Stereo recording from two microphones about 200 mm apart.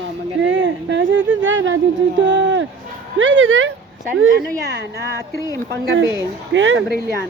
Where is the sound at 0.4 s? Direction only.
70° right (ahead or behind).